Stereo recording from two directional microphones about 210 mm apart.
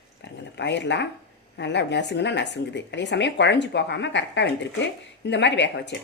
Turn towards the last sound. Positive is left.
turn(degrees=55)  # may be behind; listen again after turning